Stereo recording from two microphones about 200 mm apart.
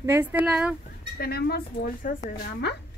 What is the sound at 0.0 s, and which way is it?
Speech, 10° right (ahead or behind).